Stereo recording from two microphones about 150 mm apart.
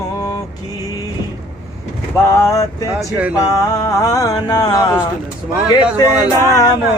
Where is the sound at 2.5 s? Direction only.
20° left (ahead or behind).